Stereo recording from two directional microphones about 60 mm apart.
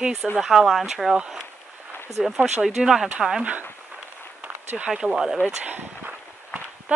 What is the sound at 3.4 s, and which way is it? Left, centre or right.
Speech, right.